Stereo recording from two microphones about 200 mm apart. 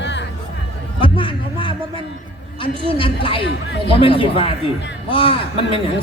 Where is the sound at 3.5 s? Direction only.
60° left (ahead or behind).